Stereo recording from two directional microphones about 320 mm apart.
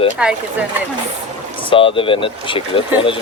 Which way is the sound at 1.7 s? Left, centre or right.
Centre.